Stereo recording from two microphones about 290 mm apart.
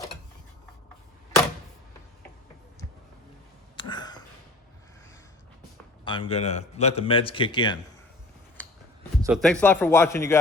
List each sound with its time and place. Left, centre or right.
3.8 s a sound: centre
6.1 s speech: centre
9.2 s speech: centre